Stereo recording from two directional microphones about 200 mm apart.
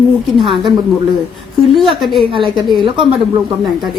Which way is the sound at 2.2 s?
25° right (ahead or behind).